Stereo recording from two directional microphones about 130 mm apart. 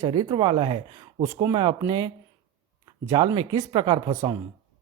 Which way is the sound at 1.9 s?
35° right (ahead or behind).